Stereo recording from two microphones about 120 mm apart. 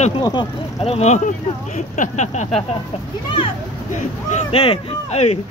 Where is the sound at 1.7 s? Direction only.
90° left; by 2.5 s 70° left (ahead or behind).